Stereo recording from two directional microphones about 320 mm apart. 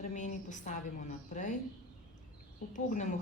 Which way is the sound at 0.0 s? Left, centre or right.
Left.